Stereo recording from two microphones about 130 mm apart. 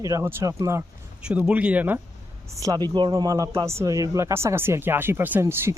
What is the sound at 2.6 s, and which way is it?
Speech, 30° right (ahead or behind).